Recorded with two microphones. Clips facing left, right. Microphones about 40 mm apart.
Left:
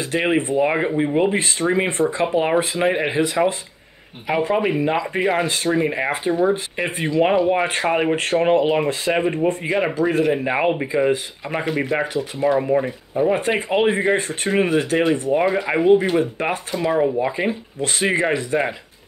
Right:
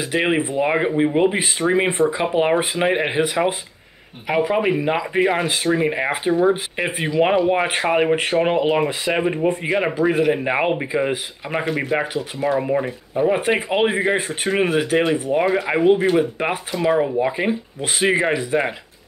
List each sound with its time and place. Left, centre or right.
0.0 s speech: centre
4.3 s speech: centre